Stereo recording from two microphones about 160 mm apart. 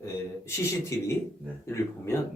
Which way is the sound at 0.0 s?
15° left (ahead or behind).